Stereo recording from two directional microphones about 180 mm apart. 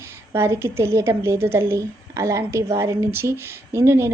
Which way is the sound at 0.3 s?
15° right (ahead or behind).